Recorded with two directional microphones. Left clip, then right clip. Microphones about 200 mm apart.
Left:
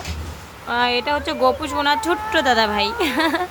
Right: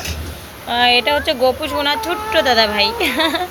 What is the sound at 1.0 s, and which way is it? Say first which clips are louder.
Speech: right 4 dB; 25° left (ahead or behind).